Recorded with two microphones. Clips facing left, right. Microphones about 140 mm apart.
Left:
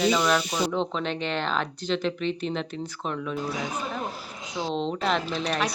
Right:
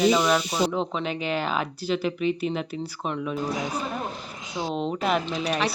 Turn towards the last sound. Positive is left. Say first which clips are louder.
# right 1 dB
turn(degrees=-10)  # may be behind; listen again after turning